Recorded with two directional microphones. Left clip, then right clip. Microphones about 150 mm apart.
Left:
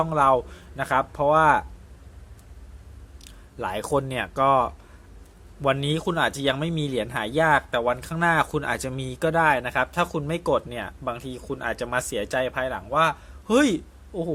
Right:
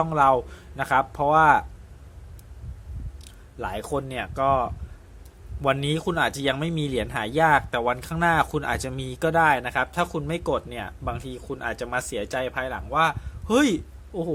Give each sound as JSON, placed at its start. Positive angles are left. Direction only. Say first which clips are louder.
{"t": 0.0, "sound": "speech", "louder": "even", "side_deg": 0}
{"t": 3.6, "sound": "speech", "louder": "left 3 dB", "side_deg": 20}
{"t": 5.6, "sound": "speech", "louder": "even", "side_deg": 5}